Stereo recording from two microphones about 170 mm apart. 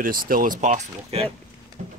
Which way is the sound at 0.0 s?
55° right (ahead or behind).